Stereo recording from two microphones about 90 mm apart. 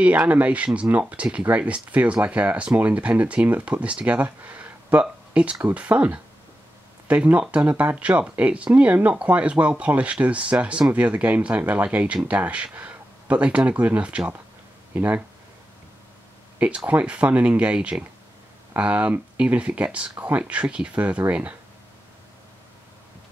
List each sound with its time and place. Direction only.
0.0 s speech: 15° right (ahead or behind)
16.5 s speech: 15° right (ahead or behind)